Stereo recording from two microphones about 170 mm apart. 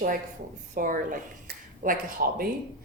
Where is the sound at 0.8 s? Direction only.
55° right (ahead or behind).